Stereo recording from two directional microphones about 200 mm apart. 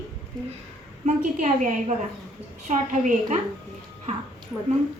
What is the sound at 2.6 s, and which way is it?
Speech, 35° right (ahead or behind).